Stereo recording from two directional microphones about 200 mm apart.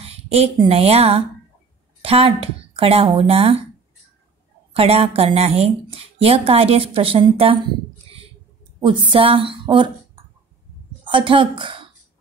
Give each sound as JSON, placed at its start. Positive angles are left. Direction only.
{"t": 0.0, "sound": "speech", "side_deg": -30}
{"t": 4.7, "sound": "speech", "side_deg": -30}
{"t": 8.7, "sound": "speech", "side_deg": -25}
{"t": 11.1, "sound": "a woman's voice", "side_deg": -25}